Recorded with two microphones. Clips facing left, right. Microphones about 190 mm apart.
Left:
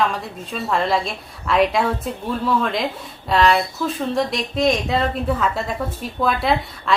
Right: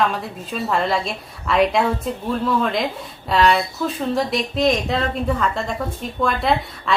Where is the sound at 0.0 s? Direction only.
Centre (ahead or behind).